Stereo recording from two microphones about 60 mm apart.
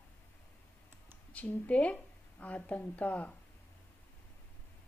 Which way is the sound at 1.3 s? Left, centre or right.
Left.